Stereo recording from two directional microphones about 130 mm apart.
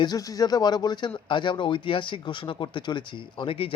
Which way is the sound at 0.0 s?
30° left (ahead or behind).